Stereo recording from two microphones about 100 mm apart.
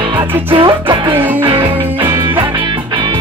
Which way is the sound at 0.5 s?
60° right (ahead or behind).